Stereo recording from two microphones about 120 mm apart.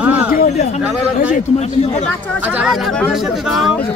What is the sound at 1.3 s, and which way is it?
Speech, 70° left (ahead or behind).